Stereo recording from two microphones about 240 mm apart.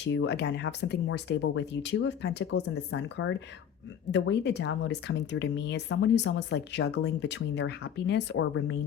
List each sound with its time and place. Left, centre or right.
0.0 s speech: left